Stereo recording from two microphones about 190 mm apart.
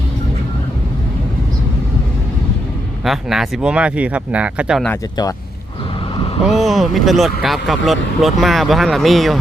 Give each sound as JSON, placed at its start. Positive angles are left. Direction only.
{"t": 3.0, "sound": "speech", "side_deg": 0}
{"t": 6.4, "sound": "speech", "side_deg": 0}